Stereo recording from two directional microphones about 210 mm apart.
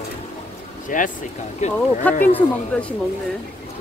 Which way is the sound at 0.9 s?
40° left (ahead or behind).